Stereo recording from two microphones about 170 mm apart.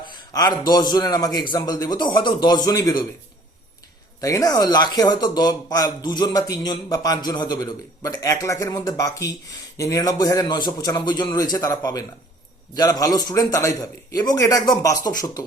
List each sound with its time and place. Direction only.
0.0 s speech: 25° left (ahead or behind)
4.2 s speech: 20° left (ahead or behind)